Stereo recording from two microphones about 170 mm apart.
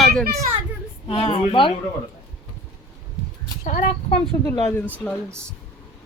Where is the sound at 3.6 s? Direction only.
50° left (ahead or behind).